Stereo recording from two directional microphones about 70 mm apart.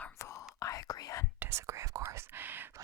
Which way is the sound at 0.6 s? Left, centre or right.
Left.